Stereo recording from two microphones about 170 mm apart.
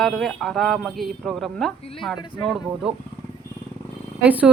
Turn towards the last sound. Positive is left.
turn(degrees=-10)  # may be behind; listen again after turning